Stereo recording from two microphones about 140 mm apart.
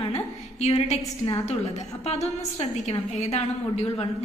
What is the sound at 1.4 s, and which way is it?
A woman's voice, 50° left (ahead or behind).